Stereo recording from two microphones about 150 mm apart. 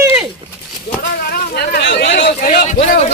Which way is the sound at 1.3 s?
90° left.